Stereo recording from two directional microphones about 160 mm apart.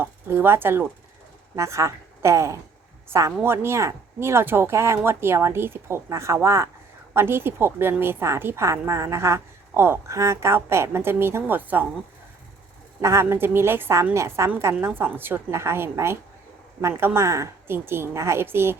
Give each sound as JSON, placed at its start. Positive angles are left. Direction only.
{"t": 0.0, "sound": "a woman's voice", "side_deg": -15}
{"t": 13.0, "sound": "a woman's voice", "side_deg": -15}